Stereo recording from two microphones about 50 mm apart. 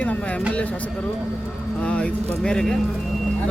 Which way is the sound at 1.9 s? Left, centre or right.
Centre.